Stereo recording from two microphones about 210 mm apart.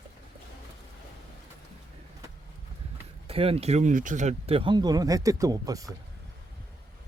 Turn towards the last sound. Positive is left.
turn(degrees=-15)  # may be behind; listen again after turning